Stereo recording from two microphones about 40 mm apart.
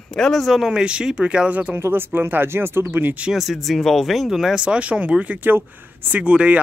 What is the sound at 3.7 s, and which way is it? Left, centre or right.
Speech, centre.